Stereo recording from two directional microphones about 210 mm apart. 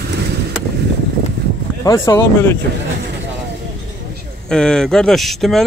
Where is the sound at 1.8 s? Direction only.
15° left (ahead or behind).